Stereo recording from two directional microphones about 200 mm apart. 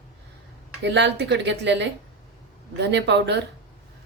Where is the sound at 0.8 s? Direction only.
60° right (ahead or behind).